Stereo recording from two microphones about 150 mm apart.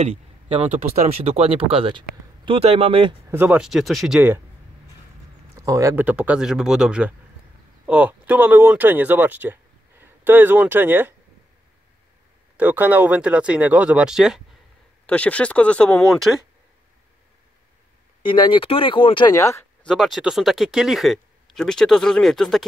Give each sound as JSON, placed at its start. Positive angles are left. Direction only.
{"t": 0.0, "sound": "a sound", "side_deg": -40}
{"t": 1.0, "sound": "speech", "side_deg": -45}
{"t": 3.3, "sound": "speech", "side_deg": -10}
{"t": 5.6, "sound": "speech", "side_deg": -20}
{"t": 12.5, "sound": "speech", "side_deg": -10}
{"t": 15.0, "sound": "speech", "side_deg": 10}
{"t": 18.2, "sound": "speech", "side_deg": 35}
{"t": 19.3, "sound": "speech", "side_deg": 20}
{"t": 19.8, "sound": "speech", "side_deg": 0}